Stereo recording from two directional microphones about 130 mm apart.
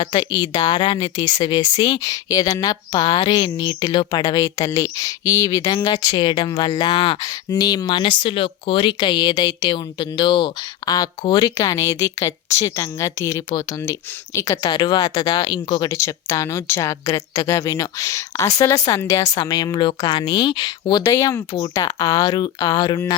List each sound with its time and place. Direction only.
0.0 s speech: 35° left (ahead or behind)
7.5 s speech: 30° left (ahead or behind)
15.9 s speech: 20° left (ahead or behind)
21.0 s speech: 25° left (ahead or behind)